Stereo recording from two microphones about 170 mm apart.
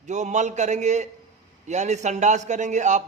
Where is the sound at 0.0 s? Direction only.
45° right (ahead or behind).